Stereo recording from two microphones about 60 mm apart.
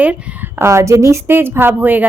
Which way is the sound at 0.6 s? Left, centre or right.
Right.